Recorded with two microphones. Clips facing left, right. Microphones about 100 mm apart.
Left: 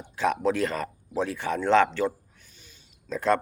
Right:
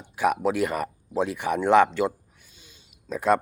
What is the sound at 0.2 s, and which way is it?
Speech, 15° right (ahead or behind).